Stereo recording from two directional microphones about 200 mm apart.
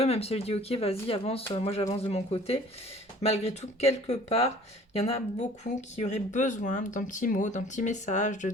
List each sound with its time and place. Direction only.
0.0 s speech: 30° left (ahead or behind)